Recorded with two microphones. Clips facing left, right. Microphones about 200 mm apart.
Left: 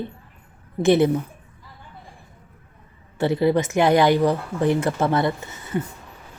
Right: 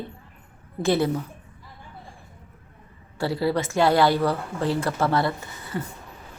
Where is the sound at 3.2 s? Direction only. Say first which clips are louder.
Left 5 dB; 20° left (ahead or behind).